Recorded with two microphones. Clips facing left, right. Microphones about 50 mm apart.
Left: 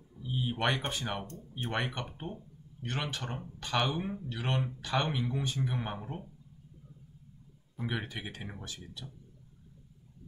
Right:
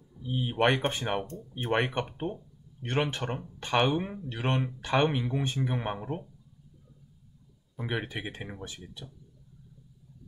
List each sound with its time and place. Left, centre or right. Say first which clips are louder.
0.3 s speech: right 5 dB; right
7.9 s speech: right 6 dB; right